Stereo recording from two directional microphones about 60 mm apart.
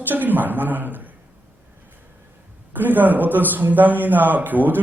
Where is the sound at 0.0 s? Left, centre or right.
Right.